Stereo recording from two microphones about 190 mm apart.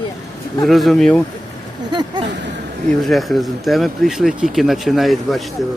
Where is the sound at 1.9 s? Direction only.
25° right (ahead or behind).